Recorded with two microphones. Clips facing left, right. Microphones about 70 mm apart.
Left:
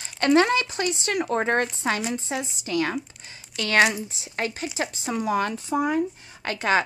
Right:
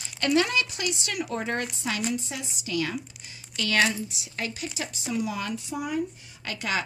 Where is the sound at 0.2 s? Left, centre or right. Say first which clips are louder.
Left 5 dB; left.